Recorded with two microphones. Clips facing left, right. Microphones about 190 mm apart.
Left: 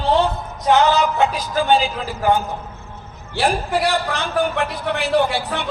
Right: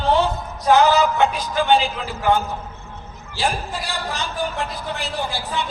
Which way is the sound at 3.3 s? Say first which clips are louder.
Left 5 dB; 65° left (ahead or behind).